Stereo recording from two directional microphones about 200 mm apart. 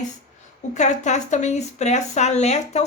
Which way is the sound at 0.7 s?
35° left (ahead or behind).